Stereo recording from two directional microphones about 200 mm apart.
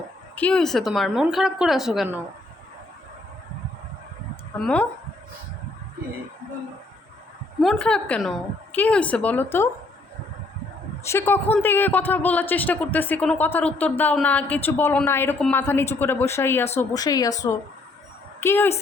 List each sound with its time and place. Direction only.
0.3 s a woman's voice: 5° left (ahead or behind)
4.6 s a woman's voice: 5° left (ahead or behind)
7.6 s a woman's voice: centre (ahead or behind)
11.0 s a man's voice: 10° left (ahead or behind)